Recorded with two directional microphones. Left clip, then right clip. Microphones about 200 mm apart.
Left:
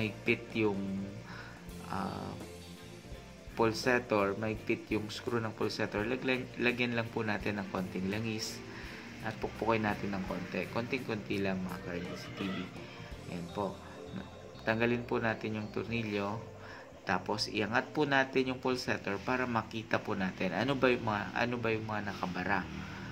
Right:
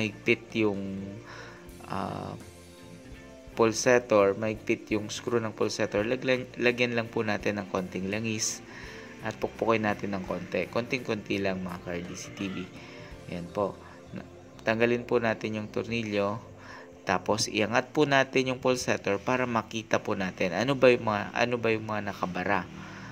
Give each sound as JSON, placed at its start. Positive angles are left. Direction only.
{"t": 0.0, "sound": "speech", "side_deg": -30}
{"t": 1.9, "sound": "speech", "side_deg": -35}
{"t": 3.5, "sound": "speech", "side_deg": -30}
{"t": 14.6, "sound": "speech", "side_deg": -30}